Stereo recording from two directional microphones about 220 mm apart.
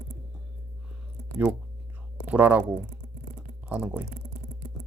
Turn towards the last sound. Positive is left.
turn(degrees=-10)  # may be behind; listen again after turning